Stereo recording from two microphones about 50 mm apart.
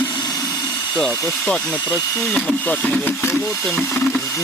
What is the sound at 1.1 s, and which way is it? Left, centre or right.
Speech, left.